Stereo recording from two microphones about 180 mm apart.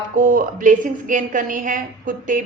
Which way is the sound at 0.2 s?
50° right (ahead or behind).